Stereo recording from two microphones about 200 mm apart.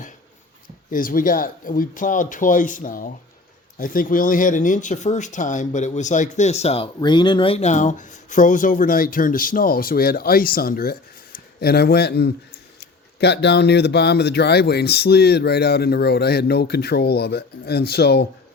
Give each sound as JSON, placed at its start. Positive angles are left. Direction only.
{"t": 0.9, "sound": "speech", "side_deg": 45}